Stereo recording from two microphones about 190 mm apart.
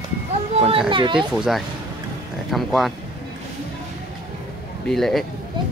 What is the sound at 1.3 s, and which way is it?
Speech, 5° right (ahead or behind).